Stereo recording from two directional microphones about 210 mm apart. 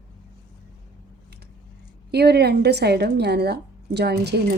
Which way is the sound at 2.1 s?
50° right (ahead or behind).